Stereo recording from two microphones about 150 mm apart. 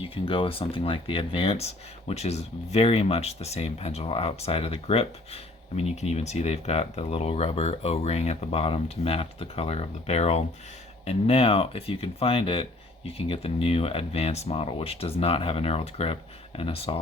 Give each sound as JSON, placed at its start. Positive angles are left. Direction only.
{"t": 0.0, "sound": "speech", "side_deg": 35}